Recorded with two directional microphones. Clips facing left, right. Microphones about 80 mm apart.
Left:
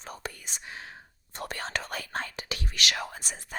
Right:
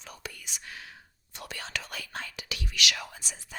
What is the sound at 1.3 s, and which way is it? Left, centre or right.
Speech, left.